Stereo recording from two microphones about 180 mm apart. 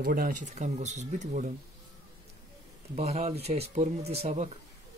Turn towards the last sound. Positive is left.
turn(degrees=-35)  # may be behind; listen again after turning